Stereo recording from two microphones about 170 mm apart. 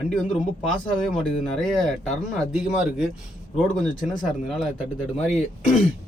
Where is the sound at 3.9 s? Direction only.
50° left (ahead or behind).